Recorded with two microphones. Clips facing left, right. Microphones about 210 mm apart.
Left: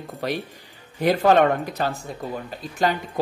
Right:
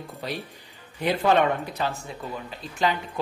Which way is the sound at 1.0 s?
45° left (ahead or behind).